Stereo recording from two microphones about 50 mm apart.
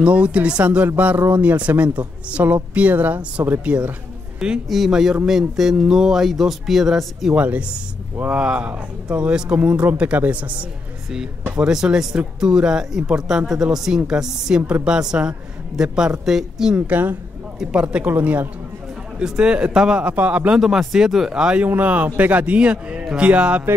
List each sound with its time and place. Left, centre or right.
0.0 s speech: right
0.9 s a man's voice: right
4.6 s a man's voice: centre
7.3 s a man's voice: right
11.6 s a woman's voice: centre
16.7 s a man's voice: right
17.7 s speech: right
18.1 s a man's voice: right
19.1 s a woman's voice: centre
20.0 s speech: right
20.5 s a woman's voice: centre
21.6 s a man's voice: right